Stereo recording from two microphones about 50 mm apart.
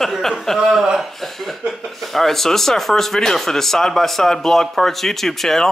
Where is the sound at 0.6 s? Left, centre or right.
Centre.